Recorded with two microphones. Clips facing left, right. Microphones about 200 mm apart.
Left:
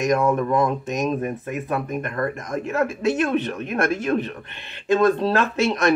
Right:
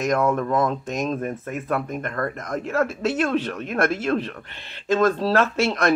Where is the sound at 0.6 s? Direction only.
15° left (ahead or behind).